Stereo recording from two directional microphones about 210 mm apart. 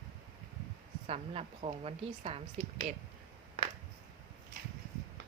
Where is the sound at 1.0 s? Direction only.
30° right (ahead or behind).